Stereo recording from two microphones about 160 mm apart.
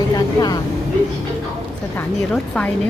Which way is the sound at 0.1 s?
25° left (ahead or behind).